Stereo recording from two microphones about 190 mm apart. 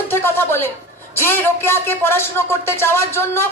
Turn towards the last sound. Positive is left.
turn(degrees=15)  # may be behind; listen again after turning